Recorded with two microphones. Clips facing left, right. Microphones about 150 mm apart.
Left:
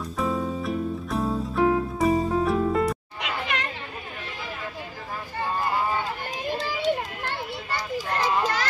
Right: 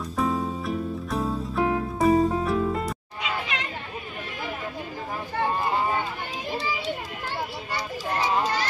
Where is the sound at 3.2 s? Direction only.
60° left (ahead or behind).